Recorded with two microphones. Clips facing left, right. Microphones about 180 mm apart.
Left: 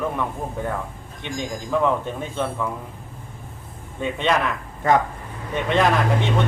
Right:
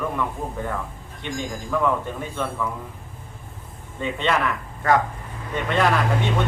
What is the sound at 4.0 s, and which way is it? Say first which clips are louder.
Speech: left 1 dB; 15° left (ahead or behind).